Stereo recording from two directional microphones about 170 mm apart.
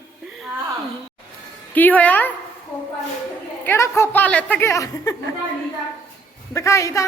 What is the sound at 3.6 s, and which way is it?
A woman's voice, 15° left (ahead or behind).